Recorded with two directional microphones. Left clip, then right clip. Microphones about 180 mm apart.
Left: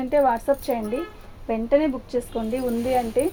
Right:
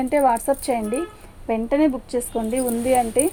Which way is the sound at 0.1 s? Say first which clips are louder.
Even; 65° right (ahead or behind).